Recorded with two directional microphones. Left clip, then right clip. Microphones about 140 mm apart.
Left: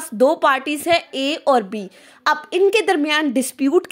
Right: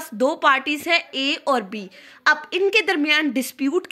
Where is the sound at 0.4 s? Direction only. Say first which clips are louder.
Left 1 dB; 45° left (ahead or behind).